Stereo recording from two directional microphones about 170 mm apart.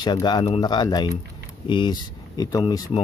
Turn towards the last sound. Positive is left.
turn(degrees=20)  # may be behind; listen again after turning